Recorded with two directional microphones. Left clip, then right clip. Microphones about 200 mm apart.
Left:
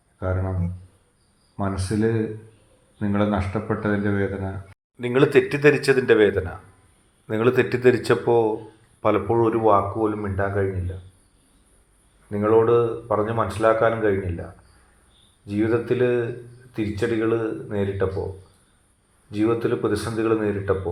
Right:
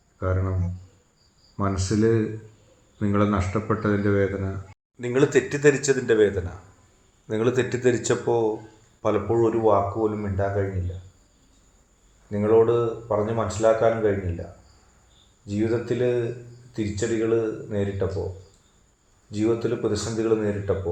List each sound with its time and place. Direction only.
0.2 s speech: 20° left (ahead or behind)
1.5 s speech: 20° left (ahead or behind)
12.3 s speech: 10° left (ahead or behind)
15.4 s speech: 15° left (ahead or behind)
19.3 s speech: 10° left (ahead or behind)